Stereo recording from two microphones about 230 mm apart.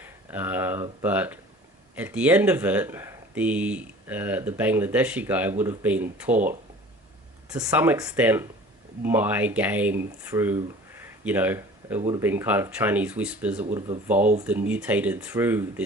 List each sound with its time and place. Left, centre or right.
0.0 s speech: centre
7.5 s speech: centre
11.0 s a sound: centre
12.2 s speech: centre
14.2 s speech: right
14.4 s speech: centre